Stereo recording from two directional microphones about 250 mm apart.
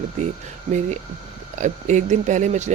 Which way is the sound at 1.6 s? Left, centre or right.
Right.